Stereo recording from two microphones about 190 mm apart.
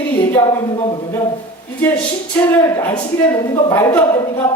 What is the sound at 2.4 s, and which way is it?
A woman's voice, 10° left (ahead or behind).